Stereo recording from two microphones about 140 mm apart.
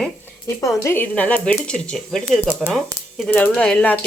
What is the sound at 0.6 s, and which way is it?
Speech, 20° left (ahead or behind).